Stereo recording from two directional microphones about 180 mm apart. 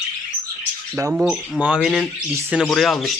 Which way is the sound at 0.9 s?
15° right (ahead or behind).